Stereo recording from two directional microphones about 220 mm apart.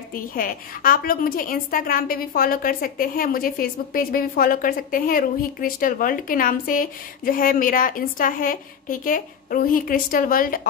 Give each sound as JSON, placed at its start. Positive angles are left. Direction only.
{"t": 0.1, "sound": "a woman's voice", "side_deg": 40}